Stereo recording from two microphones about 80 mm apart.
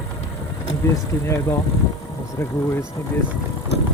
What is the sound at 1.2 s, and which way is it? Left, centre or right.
Speech, left.